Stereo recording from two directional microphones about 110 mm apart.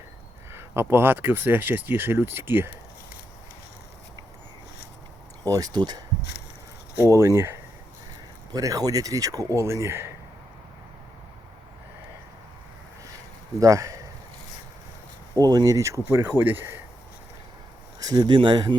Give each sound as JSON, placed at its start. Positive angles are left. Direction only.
{"t": 0.5, "sound": "speech", "side_deg": -20}
{"t": 5.5, "sound": "speech", "side_deg": -35}
{"t": 6.9, "sound": "speech", "side_deg": -25}
{"t": 13.6, "sound": "speech", "side_deg": -30}
{"t": 15.4, "sound": "speech", "side_deg": -35}
{"t": 18.0, "sound": "speech", "side_deg": -35}